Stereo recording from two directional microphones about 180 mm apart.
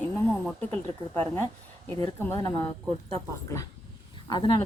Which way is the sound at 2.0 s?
15° left (ahead or behind).